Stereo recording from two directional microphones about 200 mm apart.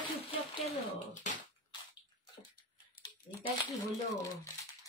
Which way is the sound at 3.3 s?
20° left (ahead or behind).